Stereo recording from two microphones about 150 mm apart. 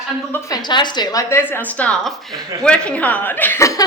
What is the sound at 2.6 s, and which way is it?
A woman's voice, 5° left (ahead or behind).